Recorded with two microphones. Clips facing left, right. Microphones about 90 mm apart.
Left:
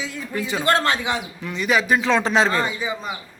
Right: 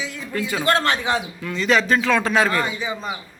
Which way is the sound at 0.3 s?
20° left (ahead or behind).